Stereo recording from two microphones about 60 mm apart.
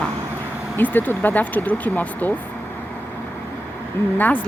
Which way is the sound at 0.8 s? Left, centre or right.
Left.